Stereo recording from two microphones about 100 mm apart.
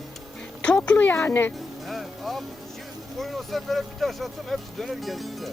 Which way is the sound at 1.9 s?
Centre (ahead or behind).